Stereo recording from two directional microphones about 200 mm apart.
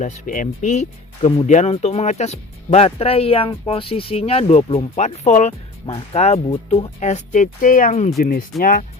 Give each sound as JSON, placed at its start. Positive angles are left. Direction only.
{"t": 0.0, "sound": "speech", "side_deg": 40}